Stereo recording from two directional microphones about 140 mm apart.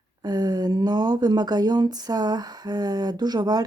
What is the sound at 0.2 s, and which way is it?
Speech, 30° right (ahead or behind).